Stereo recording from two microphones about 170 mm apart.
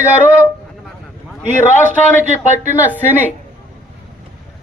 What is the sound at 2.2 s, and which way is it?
Speech, 45° right (ahead or behind).